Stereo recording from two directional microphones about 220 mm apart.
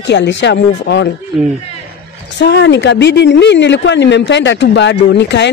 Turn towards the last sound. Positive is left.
turn(degrees=50)  # may be behind; listen again after turning